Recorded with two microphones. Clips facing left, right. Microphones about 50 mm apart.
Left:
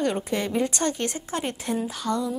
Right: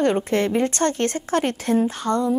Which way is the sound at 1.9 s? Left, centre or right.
Right.